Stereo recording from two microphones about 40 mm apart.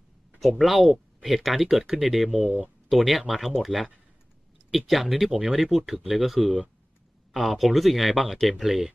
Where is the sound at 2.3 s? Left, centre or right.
Right.